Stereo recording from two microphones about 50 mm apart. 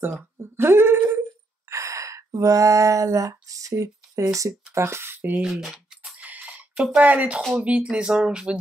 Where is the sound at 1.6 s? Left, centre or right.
Right.